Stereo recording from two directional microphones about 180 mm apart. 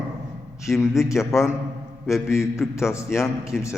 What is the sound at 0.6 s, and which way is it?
Speech, centre (ahead or behind).